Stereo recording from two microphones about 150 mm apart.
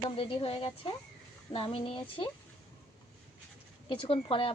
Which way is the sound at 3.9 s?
35° left (ahead or behind).